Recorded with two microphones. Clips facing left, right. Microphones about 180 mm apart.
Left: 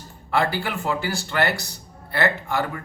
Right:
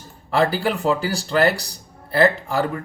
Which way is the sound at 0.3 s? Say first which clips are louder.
Right 4 dB; 35° right (ahead or behind).